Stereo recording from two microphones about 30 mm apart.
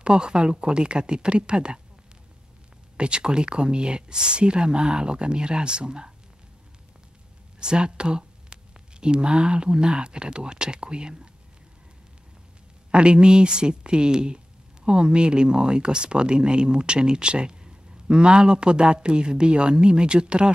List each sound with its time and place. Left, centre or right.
0.0 s speech: right
3.0 s speech: right
7.6 s a sound: right
9.0 s speech: right
12.9 s speech: right